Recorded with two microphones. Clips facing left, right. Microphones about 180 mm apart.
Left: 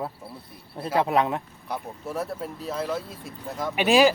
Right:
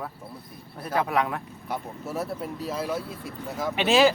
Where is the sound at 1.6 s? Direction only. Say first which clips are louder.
Right 3 dB; centre (ahead or behind).